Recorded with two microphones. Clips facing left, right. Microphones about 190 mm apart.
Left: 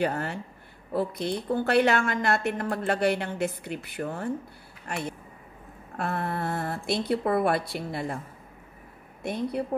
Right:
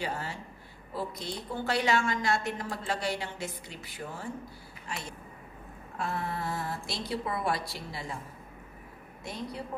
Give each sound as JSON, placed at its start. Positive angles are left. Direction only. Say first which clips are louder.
{"t": 0.0, "sound": "a woman's voice", "louder": "left 8 dB", "side_deg": 60}
{"t": 4.8, "sound": "a sound", "louder": "left 8 dB", "side_deg": 55}
{"t": 5.9, "sound": "a woman's voice", "louder": "left 4 dB", "side_deg": 60}
{"t": 9.2, "sound": "a woman's voice", "louder": "left 9 dB", "side_deg": 55}